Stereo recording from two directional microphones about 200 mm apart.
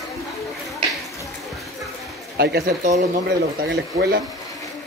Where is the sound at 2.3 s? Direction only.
50° right (ahead or behind).